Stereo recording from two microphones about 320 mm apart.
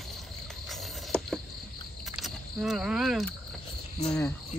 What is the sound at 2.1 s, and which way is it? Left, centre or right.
Cricket, centre.